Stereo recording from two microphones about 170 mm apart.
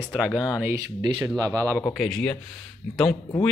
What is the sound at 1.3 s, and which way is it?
Speech, 15° right (ahead or behind).